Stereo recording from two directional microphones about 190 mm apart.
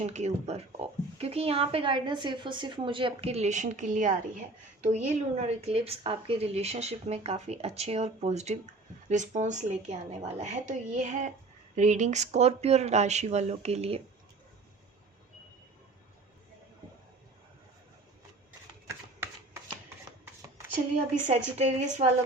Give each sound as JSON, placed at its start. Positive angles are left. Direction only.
{"t": 0.0, "sound": "a woman's voice", "side_deg": -35}
{"t": 21.2, "sound": "a woman's voice", "side_deg": -35}